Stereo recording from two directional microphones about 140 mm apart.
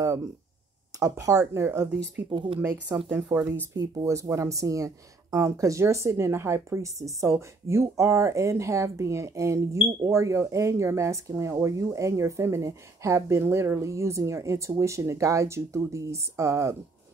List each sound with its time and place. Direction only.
0.9 s speech: 25° right (ahead or behind)
2.3 s speech: 35° right (ahead or behind)
2.9 s speech: 15° right (ahead or behind)